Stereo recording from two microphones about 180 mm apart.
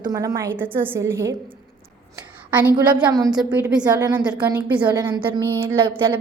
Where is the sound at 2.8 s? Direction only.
10° right (ahead or behind).